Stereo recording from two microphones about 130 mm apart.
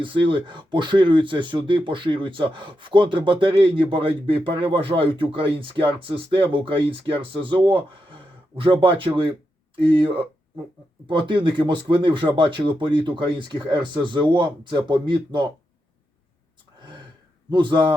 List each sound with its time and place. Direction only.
0.0 s speech: 40° right (ahead or behind)
17.5 s speech: 35° right (ahead or behind)